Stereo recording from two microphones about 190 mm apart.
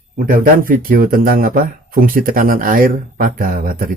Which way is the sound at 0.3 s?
50° right (ahead or behind).